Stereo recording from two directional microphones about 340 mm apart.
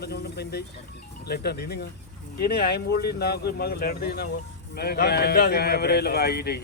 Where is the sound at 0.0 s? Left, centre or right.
Left.